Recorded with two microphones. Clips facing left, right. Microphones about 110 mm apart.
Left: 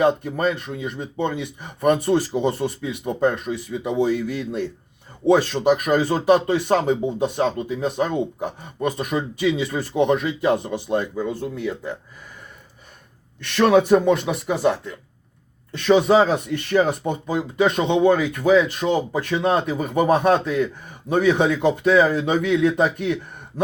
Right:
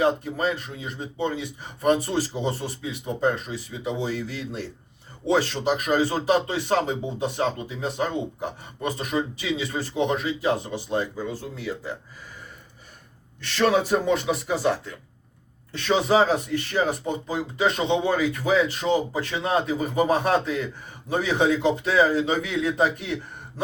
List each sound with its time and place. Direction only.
0.0 s speech: 55° left (ahead or behind)
13.4 s speech: 55° left (ahead or behind)